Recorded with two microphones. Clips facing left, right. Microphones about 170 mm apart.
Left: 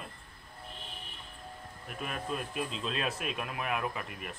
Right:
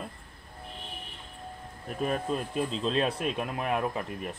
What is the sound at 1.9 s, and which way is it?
Speech, 35° right (ahead or behind).